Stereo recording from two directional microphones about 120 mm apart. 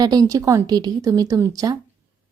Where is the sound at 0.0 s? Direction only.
30° right (ahead or behind).